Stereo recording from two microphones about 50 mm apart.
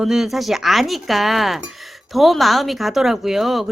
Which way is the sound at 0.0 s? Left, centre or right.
Centre.